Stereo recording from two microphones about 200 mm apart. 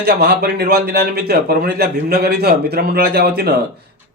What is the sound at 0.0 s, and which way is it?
A man's voice, 50° right (ahead or behind).